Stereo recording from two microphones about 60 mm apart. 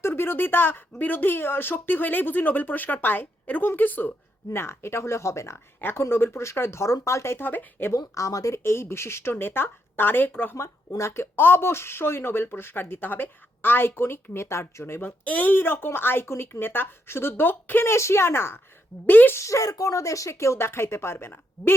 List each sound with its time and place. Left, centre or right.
0.1 s speech: left
4.5 s speech: left
7.3 s speech: left
7.9 s speech: left
8.5 s speech: left
10.5 s speech: left
15.2 s speech: left
19.0 s speech: left
19.4 s speech: left